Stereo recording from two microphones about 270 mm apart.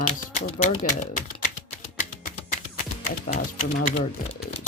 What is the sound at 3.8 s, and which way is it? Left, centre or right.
Speech, left.